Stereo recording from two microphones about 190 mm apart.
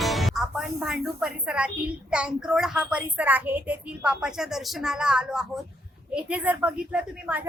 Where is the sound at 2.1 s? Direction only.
5° right (ahead or behind).